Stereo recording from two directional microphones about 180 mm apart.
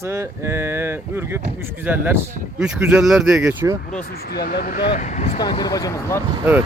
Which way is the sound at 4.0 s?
60° left (ahead or behind).